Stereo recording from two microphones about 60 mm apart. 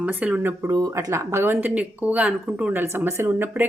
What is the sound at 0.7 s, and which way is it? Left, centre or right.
Speech, right.